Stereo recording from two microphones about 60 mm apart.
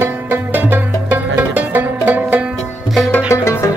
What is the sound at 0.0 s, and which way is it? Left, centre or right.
Music, right.